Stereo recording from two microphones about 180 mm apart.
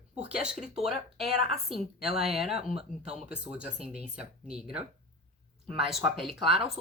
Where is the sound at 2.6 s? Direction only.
35° right (ahead or behind).